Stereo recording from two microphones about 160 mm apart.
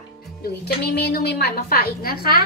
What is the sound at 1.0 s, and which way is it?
A woman's voice, 90° left.